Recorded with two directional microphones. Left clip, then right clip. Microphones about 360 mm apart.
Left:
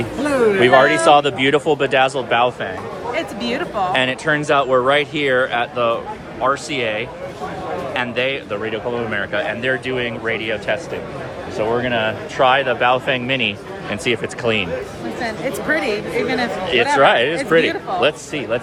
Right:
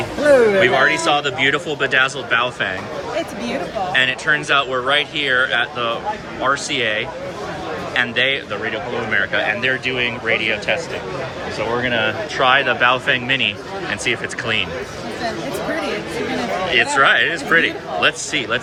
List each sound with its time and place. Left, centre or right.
0.6 s speech: centre
3.9 s speech: centre
11.8 s speech: centre
16.7 s speech: centre